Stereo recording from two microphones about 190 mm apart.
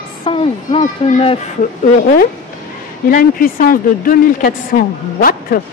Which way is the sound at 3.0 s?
50° left (ahead or behind).